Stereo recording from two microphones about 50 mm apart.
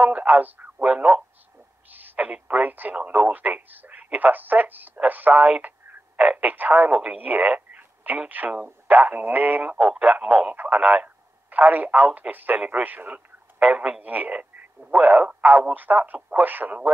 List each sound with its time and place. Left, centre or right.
0.0 s speech: right
1.9 s a sound: right
2.4 s speech: right
3.0 s speech: right
14.3 s radio: right
14.9 s speech: right